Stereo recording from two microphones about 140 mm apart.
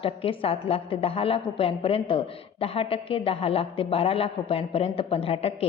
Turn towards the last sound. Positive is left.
turn(degrees=45)  # may be behind; listen again after turning